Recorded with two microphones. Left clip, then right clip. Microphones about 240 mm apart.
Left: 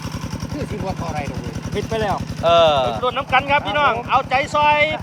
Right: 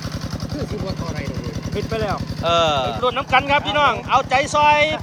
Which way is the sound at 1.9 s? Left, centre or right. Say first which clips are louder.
Left 2 dB; left.